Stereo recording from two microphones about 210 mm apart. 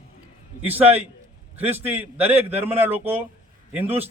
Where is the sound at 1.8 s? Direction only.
10° right (ahead or behind).